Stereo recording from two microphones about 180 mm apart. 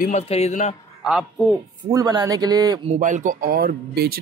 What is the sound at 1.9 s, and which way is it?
Speech, 20° right (ahead or behind).